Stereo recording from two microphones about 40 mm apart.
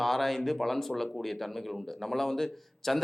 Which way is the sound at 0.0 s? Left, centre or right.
Centre.